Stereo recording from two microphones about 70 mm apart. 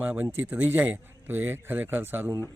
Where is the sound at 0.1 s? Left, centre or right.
Right.